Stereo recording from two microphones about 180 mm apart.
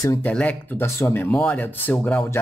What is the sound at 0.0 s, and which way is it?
Speech, 20° left (ahead or behind).